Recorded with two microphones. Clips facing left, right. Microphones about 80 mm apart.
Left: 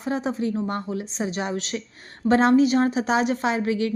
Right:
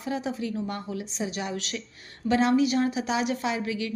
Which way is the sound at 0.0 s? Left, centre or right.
Left.